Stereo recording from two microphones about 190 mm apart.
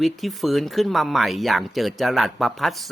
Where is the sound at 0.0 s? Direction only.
Centre (ahead or behind).